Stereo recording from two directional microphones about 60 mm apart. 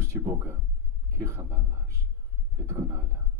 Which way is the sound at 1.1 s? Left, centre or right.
Right.